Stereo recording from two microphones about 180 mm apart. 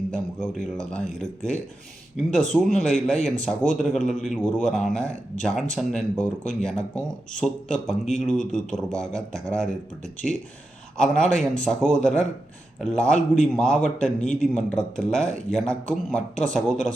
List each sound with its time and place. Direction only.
0.1 s a man's voice: 5° left (ahead or behind)
10.9 s a man's voice: 5° left (ahead or behind)